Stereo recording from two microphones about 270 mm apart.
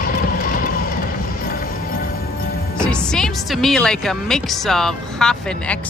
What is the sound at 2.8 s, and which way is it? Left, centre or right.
Speech, centre.